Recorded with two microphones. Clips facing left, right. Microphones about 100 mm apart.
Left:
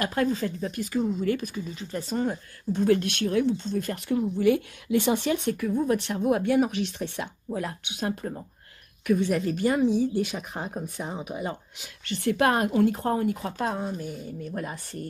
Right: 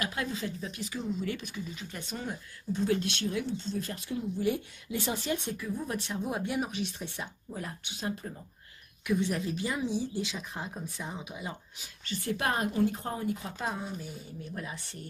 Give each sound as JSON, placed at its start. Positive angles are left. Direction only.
{"t": 0.0, "sound": "speech", "side_deg": 45}
{"t": 2.7, "sound": "a woman's voice", "side_deg": 55}
{"t": 11.8, "sound": "a woman's voice", "side_deg": 70}